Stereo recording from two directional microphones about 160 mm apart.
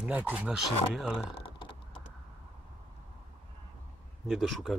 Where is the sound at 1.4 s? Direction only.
30° left (ahead or behind).